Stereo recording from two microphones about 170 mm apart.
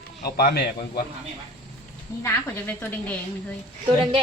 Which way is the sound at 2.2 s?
10° left (ahead or behind).